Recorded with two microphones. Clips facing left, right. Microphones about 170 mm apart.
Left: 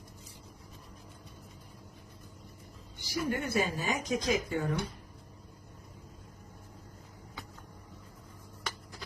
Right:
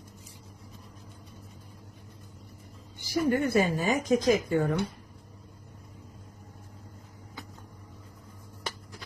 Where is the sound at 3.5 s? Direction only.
50° right (ahead or behind).